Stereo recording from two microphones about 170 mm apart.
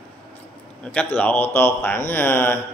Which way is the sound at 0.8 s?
10° left (ahead or behind).